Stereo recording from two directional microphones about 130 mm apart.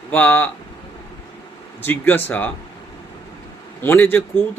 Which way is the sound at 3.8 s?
15° left (ahead or behind).